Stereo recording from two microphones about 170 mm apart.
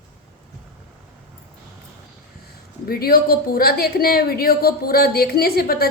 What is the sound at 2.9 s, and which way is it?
A woman's voice, 60° left (ahead or behind).